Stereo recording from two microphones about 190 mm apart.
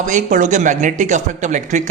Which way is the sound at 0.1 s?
40° right (ahead or behind).